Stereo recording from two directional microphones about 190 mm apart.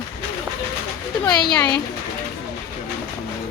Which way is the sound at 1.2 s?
25° left (ahead or behind).